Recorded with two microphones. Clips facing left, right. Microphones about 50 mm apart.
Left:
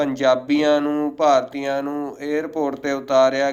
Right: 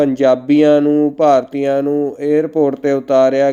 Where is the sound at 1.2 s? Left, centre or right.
Right.